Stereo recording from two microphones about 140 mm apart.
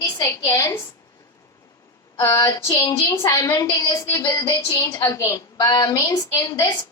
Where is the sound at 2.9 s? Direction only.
15° left (ahead or behind); by 6.9 s 30° left (ahead or behind).